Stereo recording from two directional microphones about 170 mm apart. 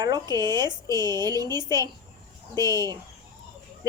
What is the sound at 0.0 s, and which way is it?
Speech, 25° right (ahead or behind).